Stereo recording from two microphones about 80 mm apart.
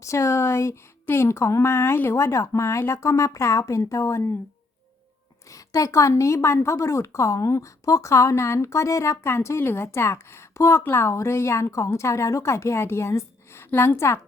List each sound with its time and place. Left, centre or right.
0.0 s a woman's voice: left
5.5 s a woman's voice: left